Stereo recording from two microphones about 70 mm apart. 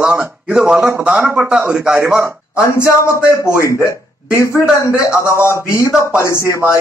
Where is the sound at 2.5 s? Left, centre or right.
Left.